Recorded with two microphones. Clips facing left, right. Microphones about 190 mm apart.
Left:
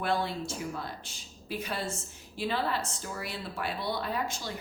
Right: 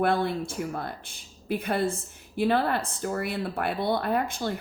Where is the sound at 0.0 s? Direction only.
55° right (ahead or behind).